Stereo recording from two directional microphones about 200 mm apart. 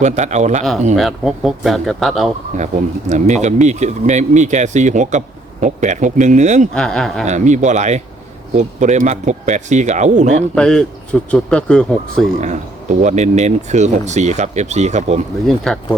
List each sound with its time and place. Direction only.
0.0 s speech: 35° right (ahead or behind)
0.9 s speech: centre (ahead or behind)
2.6 s speech: 35° right (ahead or behind)
6.7 s speech: 5° left (ahead or behind)
7.3 s speech: 35° right (ahead or behind)
10.5 s speech: 5° left (ahead or behind)
13.0 s speech: 35° right (ahead or behind)
15.4 s speech: centre (ahead or behind)